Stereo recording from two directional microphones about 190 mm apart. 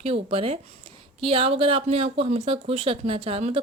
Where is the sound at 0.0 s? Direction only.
30° right (ahead or behind).